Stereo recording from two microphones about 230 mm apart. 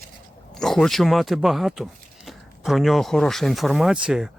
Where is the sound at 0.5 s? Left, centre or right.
Centre.